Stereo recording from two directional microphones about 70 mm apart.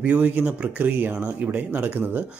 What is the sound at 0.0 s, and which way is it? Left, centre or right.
Speech, centre.